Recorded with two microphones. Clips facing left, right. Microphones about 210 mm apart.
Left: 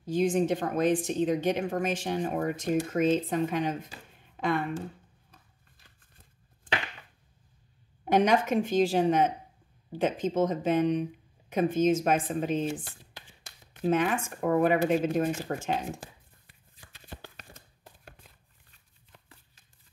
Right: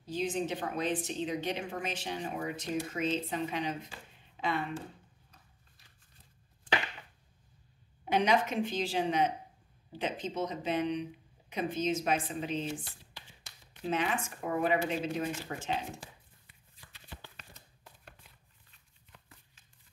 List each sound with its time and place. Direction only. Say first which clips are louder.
0.0 s a woman's voice: left 8 dB; 50° left (ahead or behind)
8.0 s a woman's voice: left 5 dB; 50° left (ahead or behind)
16.8 s a sound: left 5 dB; 45° left (ahead or behind)